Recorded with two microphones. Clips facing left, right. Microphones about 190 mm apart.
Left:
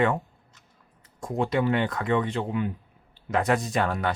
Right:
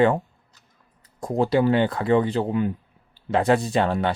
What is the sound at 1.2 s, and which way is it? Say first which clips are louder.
Speech: right 5 dB; 35° right (ahead or behind).